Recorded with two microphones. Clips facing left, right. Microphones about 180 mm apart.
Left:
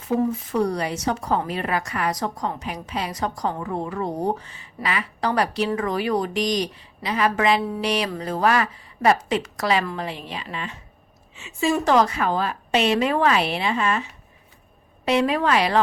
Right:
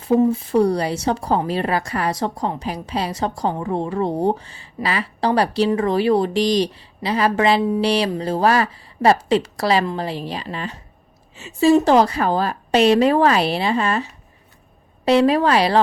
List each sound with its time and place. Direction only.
0.2 s a woman's voice: 30° right (ahead or behind)